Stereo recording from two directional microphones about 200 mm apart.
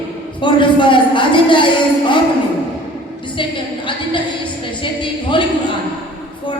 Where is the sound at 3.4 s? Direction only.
25° left (ahead or behind).